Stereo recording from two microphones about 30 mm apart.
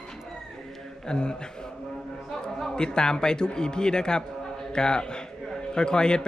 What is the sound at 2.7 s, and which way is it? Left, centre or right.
A man's voice, left.